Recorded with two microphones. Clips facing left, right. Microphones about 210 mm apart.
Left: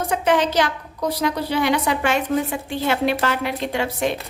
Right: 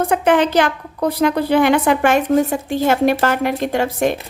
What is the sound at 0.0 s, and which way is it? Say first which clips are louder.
A woman's voice: right 5 dB; 55° right (ahead or behind).